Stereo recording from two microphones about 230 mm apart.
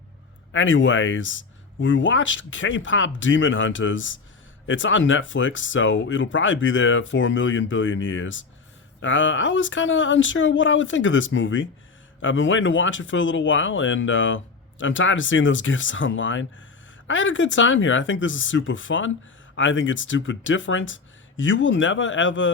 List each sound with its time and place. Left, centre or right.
0.5 s speech: left